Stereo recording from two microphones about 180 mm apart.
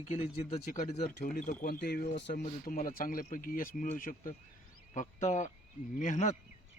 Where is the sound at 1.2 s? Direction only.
50° left (ahead or behind).